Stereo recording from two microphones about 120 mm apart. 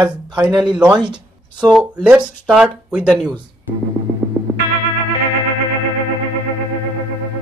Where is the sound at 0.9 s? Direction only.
40° right (ahead or behind).